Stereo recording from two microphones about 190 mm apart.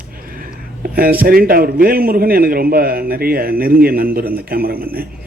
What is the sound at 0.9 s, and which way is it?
A man's voice, 50° right (ahead or behind).